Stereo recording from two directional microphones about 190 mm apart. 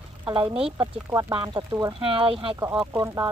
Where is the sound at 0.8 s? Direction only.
15° right (ahead or behind).